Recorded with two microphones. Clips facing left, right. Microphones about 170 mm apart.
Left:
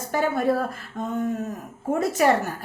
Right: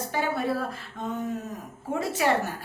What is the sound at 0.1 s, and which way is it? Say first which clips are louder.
A woman's voice: left 6 dB; 50° left (ahead or behind).